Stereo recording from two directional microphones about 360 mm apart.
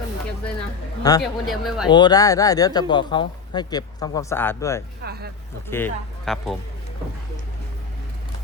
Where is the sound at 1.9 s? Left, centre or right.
Centre.